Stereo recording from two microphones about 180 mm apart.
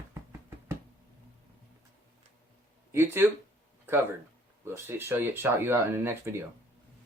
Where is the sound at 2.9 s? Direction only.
15° right (ahead or behind).